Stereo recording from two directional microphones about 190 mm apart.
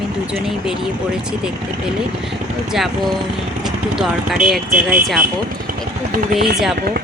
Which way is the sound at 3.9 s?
Centre (ahead or behind).